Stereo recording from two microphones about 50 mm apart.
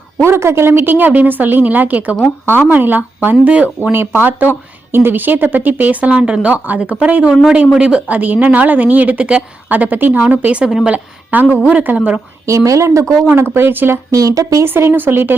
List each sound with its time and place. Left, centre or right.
0.2 s a woman's voice: right
3.9 s speech: right
4.9 s a woman's voice: right; by 8.0 s centre
8.0 s a woman's voice: right
10.6 s speech: centre
10.8 s a woman's voice: right
12.5 s speech: right
13.3 s a woman's voice: right
14.9 s speech: right